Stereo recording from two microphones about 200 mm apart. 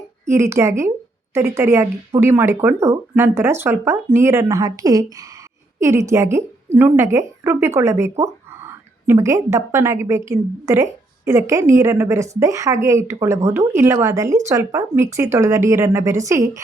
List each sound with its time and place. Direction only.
0.3 s speech: 15° right (ahead or behind)